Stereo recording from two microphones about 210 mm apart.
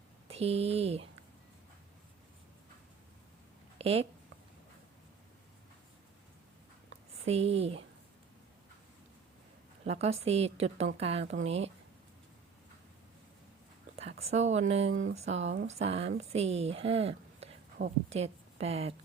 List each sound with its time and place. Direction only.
0.3 s speech: 30° right (ahead or behind)
3.8 s a woman's voice: 30° right (ahead or behind)
7.3 s a woman's voice: 30° right (ahead or behind)
9.8 s a woman's voice: 30° right (ahead or behind)
13.9 s speech: 30° right (ahead or behind)
14.8 s speech: 65° right (ahead or behind)
15.1 s a woman's voice: 30° right (ahead or behind)